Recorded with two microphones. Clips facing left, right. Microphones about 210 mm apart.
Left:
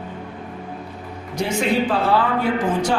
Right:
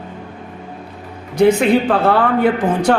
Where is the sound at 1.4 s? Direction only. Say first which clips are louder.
Right 8 dB; 60° right (ahead or behind).